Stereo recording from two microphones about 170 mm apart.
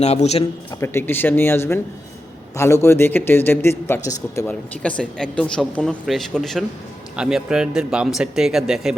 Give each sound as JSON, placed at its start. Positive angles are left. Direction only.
{"t": 0.0, "sound": "speech", "side_deg": 40}
{"t": 0.7, "sound": "a man's voice", "side_deg": 15}